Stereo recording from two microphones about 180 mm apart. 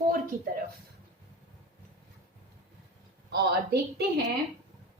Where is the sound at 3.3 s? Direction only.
65° right (ahead or behind).